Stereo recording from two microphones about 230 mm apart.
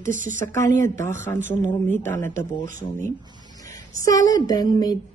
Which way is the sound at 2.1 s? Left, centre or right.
Centre.